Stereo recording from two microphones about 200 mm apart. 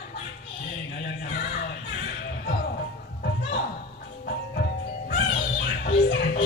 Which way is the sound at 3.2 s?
55° left (ahead or behind).